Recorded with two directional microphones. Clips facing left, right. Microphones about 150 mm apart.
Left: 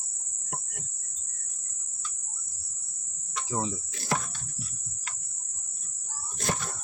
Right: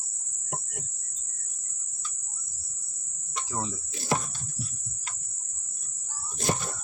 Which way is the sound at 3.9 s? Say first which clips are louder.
Right 3 dB; 25° right (ahead or behind).